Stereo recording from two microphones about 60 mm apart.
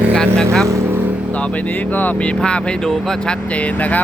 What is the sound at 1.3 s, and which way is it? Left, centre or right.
Speech, left.